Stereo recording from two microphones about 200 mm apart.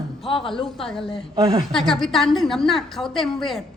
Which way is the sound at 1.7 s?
Centre (ahead or behind).